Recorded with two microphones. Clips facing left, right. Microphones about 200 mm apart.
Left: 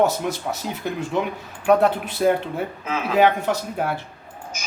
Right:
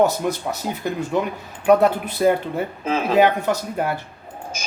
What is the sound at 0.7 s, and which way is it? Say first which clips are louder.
Speech: right 3 dB; centre (ahead or behind).